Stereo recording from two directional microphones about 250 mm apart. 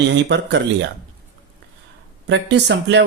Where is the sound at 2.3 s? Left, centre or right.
Right.